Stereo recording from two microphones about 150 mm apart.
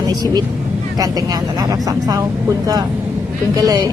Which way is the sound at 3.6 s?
25° right (ahead or behind).